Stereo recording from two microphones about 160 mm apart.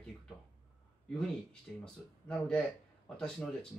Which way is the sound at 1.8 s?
5° left (ahead or behind).